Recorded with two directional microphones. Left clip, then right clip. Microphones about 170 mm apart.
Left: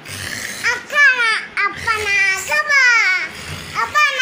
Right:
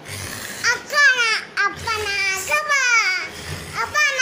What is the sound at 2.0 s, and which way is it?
Child singing, centre (ahead or behind).